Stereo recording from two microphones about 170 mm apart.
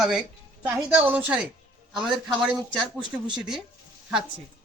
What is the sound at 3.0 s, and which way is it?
Speech, 25° right (ahead or behind).